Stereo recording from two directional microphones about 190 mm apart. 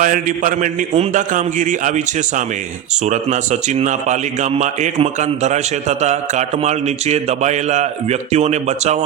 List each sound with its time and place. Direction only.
0.0 s a man's voice: 45° right (ahead or behind)
3.1 s a man's voice: 40° right (ahead or behind)